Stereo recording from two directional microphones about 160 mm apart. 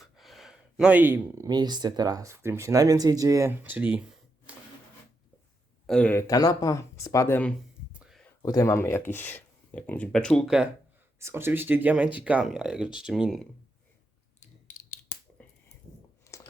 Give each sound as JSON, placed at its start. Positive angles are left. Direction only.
{"t": 0.0, "sound": "a sound", "side_deg": 0}
{"t": 1.5, "sound": "speech", "side_deg": -25}
{"t": 3.6, "sound": "speech", "side_deg": -10}
{"t": 4.5, "sound": "printer", "side_deg": -10}
{"t": 5.8, "sound": "a man's voice", "side_deg": 5}
{"t": 6.2, "sound": "speech", "side_deg": 20}
{"t": 7.9, "sound": "a sound", "side_deg": -5}
{"t": 8.4, "sound": "speech", "side_deg": 25}
{"t": 11.2, "sound": "speech", "side_deg": -15}
{"t": 15.1, "sound": "finger snapping", "side_deg": 50}
{"t": 16.3, "sound": "a sound", "side_deg": 20}